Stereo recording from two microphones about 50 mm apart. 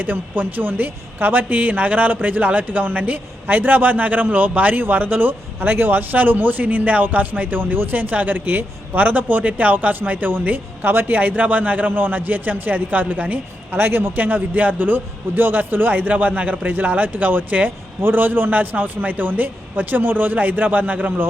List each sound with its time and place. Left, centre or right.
0.0 s a woman's voice: right